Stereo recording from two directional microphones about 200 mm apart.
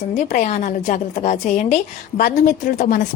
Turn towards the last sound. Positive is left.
turn(degrees=45)  # may be behind; listen again after turning